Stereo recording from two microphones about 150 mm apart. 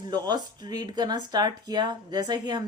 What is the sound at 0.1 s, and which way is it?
Speech, 30° right (ahead or behind).